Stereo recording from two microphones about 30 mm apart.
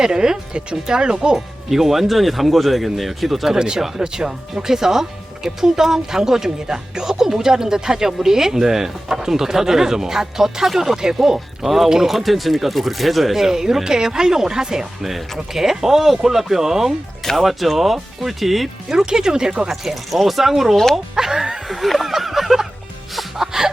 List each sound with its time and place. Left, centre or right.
0.0 s speech: right
1.7 s speech: centre
3.5 s speech: right
3.8 s speech: centre
4.0 s speech: right; by 13.5 s centre
13.5 s speech: centre
17.3 s speech: centre
18.9 s speech: centre
19.6 s speech: centre
21.7 s a sound: centre